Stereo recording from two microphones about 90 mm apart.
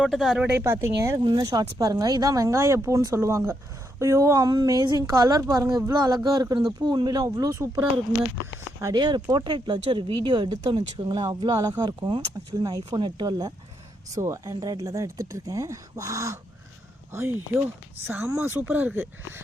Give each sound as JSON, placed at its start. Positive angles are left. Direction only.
{"t": 0.1, "sound": "speech", "side_deg": 0}
{"t": 0.6, "sound": "speech", "side_deg": -30}
{"t": 1.2, "sound": "speech", "side_deg": -55}
{"t": 7.3, "sound": "speech", "side_deg": -40}
{"t": 9.0, "sound": "speech", "side_deg": -50}
{"t": 14.1, "sound": "speech", "side_deg": -35}